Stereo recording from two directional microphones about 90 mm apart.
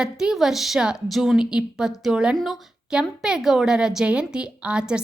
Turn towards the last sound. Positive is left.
turn(degrees=-10)  # may be behind; listen again after turning